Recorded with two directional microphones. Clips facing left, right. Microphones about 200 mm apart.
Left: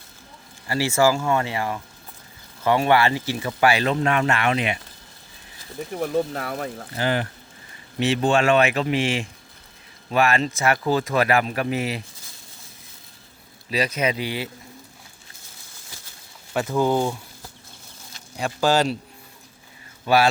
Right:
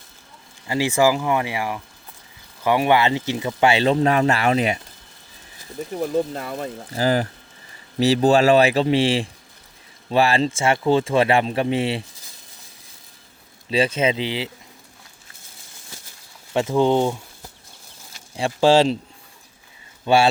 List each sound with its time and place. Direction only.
0.7 s speech: 15° right (ahead or behind); by 4.8 s 35° right (ahead or behind)
5.9 s speech: 5° left (ahead or behind)
6.9 s a man's voice: 35° right (ahead or behind)
13.7 s speech: 30° right (ahead or behind)
16.6 s speech: 25° right (ahead or behind)
18.3 s speech: 30° right (ahead or behind)
20.1 s speech: 25° right (ahead or behind)